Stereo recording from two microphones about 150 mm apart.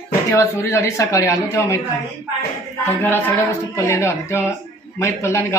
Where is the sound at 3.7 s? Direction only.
20° left (ahead or behind).